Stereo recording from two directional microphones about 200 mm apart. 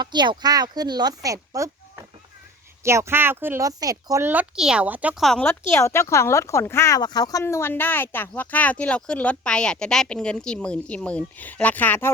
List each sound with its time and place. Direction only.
0.0 s speech: 20° right (ahead or behind); by 5.5 s centre (ahead or behind)
5.5 s speech: 15° left (ahead or behind)